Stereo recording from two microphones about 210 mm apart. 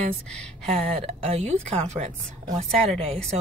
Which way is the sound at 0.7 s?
30° right (ahead or behind).